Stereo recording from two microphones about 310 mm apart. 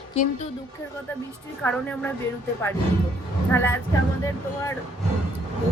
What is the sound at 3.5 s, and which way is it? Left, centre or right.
Speech, centre.